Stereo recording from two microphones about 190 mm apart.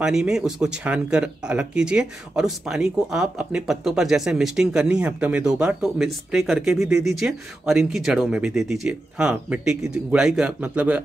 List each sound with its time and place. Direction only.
0.0 s speech: 5° right (ahead or behind)